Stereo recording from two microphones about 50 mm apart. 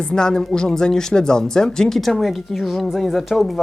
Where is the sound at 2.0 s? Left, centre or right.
Centre.